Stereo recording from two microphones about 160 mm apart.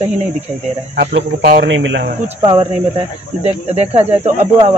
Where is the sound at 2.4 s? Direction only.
35° right (ahead or behind).